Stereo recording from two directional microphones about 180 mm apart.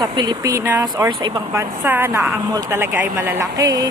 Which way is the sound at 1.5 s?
10° right (ahead or behind).